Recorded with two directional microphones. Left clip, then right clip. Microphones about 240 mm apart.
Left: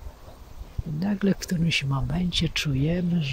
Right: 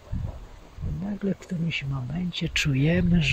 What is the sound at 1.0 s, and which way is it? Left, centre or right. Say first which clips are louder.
Speech: left 5 dB; centre.